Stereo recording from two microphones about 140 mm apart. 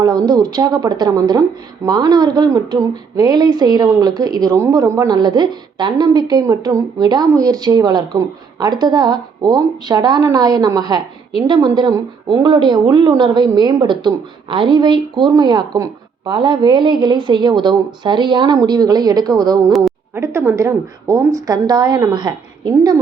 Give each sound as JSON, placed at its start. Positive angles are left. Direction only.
{"t": 0.0, "sound": "speech", "side_deg": -30}
{"t": 20.1, "sound": "speech", "side_deg": -15}